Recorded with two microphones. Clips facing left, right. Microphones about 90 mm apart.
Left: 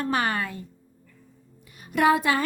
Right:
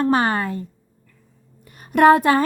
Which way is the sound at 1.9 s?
50° right (ahead or behind).